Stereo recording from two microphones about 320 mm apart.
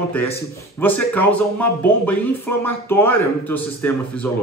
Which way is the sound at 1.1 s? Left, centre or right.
Centre.